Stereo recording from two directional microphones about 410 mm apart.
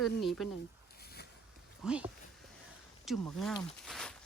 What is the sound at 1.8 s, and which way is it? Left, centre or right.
Speech, centre.